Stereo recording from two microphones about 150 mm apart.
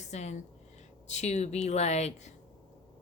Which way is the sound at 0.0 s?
50° left (ahead or behind).